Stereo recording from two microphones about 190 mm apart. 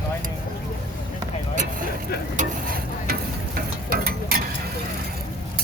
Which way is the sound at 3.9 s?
55° right (ahead or behind).